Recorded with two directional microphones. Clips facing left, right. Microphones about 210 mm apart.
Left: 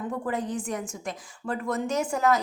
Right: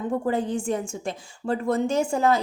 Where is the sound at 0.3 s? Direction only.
30° right (ahead or behind).